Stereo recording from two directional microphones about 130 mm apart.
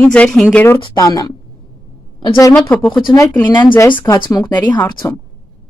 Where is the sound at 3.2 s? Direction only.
25° left (ahead or behind).